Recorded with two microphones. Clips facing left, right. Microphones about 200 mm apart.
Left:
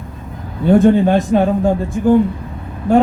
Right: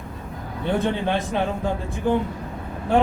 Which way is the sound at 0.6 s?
45° left (ahead or behind).